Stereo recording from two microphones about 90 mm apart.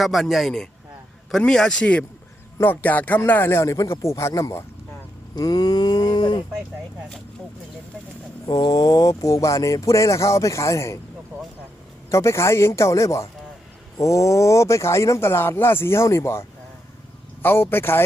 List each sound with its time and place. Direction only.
0.0 s a man's voice: centre (ahead or behind); by 4.6 s 35° left (ahead or behind)
5.3 s a sound: 45° left (ahead or behind)
8.6 s speech: 45° left (ahead or behind)
12.1 s speech: 30° left (ahead or behind)